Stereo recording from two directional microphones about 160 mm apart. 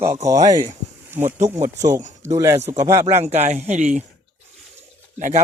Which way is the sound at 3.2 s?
45° right (ahead or behind).